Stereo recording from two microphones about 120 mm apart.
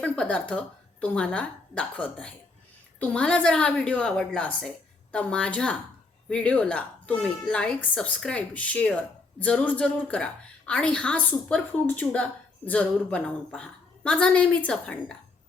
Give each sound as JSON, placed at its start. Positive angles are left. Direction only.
{"t": 0.0, "sound": "a woman's voice", "side_deg": 10}